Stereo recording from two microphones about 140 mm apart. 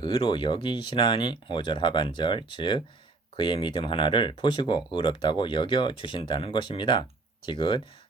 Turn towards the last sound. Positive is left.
turn(degrees=35)  # may be behind; listen again after turning